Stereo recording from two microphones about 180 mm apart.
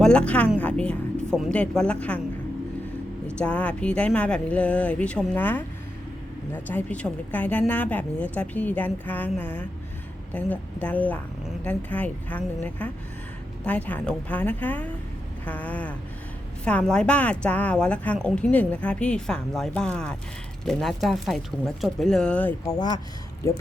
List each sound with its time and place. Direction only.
0.0 s a woman's voice: 5° left (ahead or behind)
3.2 s a woman's voice: 5° left (ahead or behind)
22.6 s a woman's voice: 20° left (ahead or behind)